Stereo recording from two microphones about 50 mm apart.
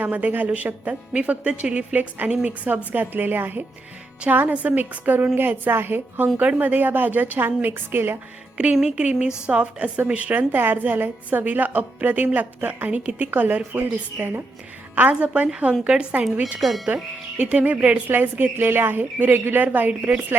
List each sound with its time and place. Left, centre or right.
0.0 s a woman's voice: right
6.4 s a woman's voice: right
8.5 s a woman's voice: centre
13.7 s a woman's voice: right
14.9 s a woman's voice: right
15.9 s a woman's voice: centre
16.6 s speech: centre
16.9 s a woman's voice: right
18.1 s a woman's voice: right